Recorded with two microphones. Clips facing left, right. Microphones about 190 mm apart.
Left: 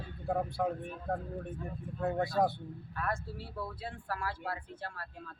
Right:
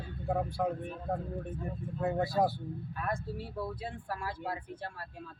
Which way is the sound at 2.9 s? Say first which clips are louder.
Even; 15° right (ahead or behind).